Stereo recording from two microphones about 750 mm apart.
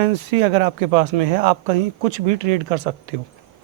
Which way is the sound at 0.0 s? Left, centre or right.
Right.